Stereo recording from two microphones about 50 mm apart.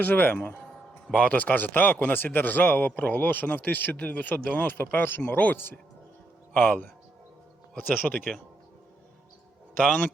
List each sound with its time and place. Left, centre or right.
0.0 s speech: left
4.6 s speech: left
6.5 s speech: left